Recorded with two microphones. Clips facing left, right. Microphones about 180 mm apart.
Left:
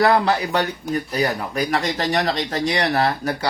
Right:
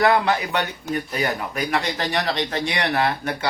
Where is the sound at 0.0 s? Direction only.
35° left (ahead or behind).